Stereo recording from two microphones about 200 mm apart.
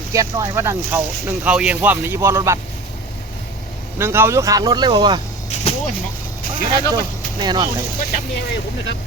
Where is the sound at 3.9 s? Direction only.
10° right (ahead or behind).